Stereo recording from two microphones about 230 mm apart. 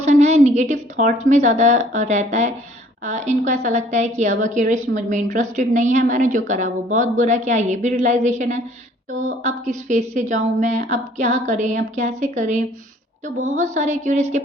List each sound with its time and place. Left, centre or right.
0.0 s a woman's voice: right